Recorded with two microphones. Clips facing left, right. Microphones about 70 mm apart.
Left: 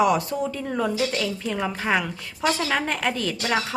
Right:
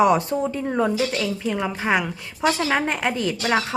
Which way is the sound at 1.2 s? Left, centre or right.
Centre.